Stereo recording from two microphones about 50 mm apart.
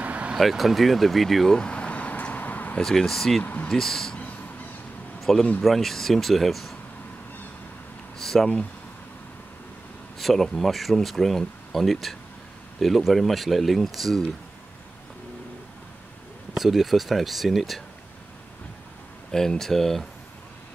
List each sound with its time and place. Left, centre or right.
0.0 s vehicle: right
0.4 s speech: centre
1.6 s vehicle: left
2.8 s speech: centre
5.2 s speech: centre
8.2 s a sound: centre
10.1 s speech: centre
16.5 s speech: centre
19.3 s speech: centre